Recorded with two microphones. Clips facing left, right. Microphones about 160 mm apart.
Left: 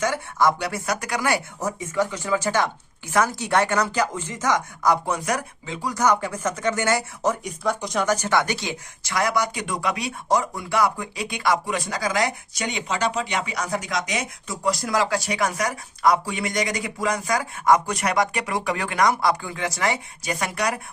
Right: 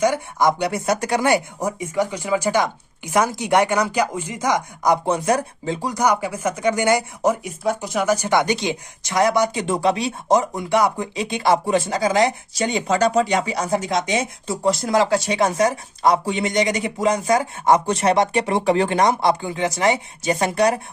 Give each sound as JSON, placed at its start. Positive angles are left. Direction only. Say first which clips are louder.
{"t": 0.0, "sound": "speech", "louder": "right 3 dB", "side_deg": -15}
{"t": 5.9, "sound": "speech", "louder": "even", "side_deg": -15}